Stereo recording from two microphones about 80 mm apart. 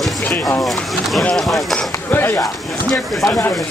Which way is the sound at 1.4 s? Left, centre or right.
Centre.